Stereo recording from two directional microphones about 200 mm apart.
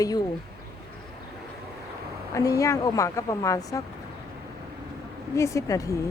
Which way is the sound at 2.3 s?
15° left (ahead or behind).